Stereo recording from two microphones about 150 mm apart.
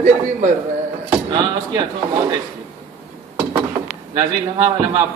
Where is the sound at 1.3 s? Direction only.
30° right (ahead or behind).